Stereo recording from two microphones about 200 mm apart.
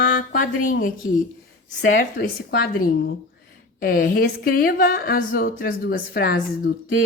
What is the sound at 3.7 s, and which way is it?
A woman's voice, 45° left (ahead or behind).